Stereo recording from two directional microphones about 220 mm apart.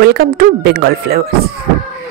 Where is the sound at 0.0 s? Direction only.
45° right (ahead or behind).